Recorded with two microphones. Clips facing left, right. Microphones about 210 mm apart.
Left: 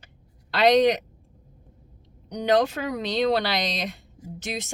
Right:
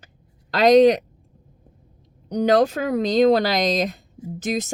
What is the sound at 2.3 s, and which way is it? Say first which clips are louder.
Speech: right 4 dB; 45° right (ahead or behind).